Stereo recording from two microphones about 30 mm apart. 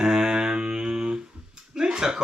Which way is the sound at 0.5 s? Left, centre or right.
Right.